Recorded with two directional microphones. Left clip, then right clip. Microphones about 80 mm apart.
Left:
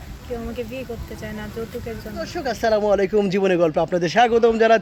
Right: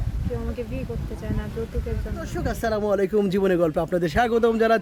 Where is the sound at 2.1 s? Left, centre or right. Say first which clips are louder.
Left 6 dB; right.